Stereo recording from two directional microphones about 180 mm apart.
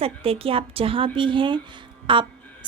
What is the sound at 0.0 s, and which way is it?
A woman's voice, 30° right (ahead or behind).